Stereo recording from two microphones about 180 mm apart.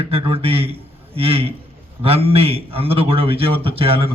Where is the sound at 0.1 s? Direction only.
30° right (ahead or behind).